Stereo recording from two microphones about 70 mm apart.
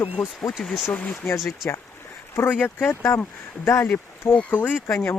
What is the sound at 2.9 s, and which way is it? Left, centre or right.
Speech, left.